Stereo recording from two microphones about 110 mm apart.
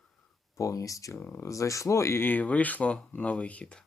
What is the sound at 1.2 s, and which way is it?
Speech, 20° left (ahead or behind).